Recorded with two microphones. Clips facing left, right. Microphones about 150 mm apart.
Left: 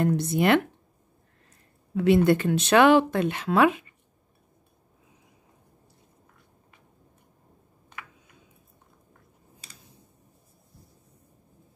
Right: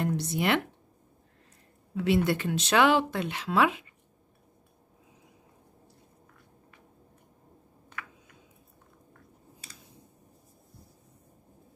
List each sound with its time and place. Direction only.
0.0 s speech: 50° left (ahead or behind)
2.0 s speech: 50° left (ahead or behind)